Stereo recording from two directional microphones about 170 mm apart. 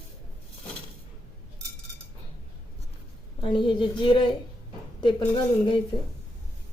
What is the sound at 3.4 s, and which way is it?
Speech, 30° left (ahead or behind).